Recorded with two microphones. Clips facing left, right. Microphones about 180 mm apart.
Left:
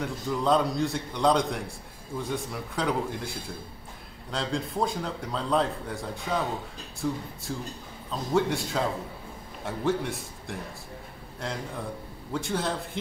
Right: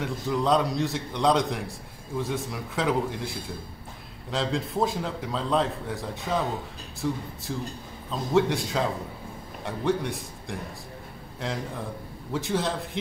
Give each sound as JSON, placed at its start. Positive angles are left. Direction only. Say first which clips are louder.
{"t": 0.0, "sound": "a man's voice", "louder": "right 1 dB", "side_deg": 0}
{"t": 8.1, "sound": "a man's voice", "louder": "right 2 dB", "side_deg": 0}